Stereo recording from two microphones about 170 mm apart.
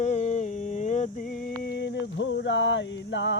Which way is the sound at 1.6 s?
75° left (ahead or behind).